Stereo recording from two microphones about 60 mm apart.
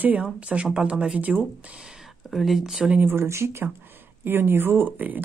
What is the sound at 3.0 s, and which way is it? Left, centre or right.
Speech, right.